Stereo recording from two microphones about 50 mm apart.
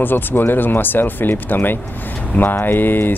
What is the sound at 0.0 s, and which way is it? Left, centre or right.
Speech, left.